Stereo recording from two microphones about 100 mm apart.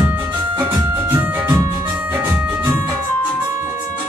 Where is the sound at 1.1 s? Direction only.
25° right (ahead or behind).